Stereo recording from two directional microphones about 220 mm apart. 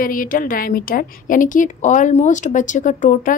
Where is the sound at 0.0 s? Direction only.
40° left (ahead or behind).